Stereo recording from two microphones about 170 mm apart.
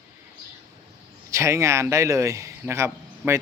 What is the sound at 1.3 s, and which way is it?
Speech, 15° right (ahead or behind).